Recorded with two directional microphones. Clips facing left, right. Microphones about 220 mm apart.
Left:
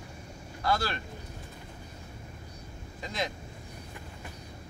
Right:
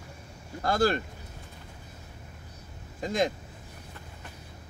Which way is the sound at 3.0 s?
50° right (ahead or behind).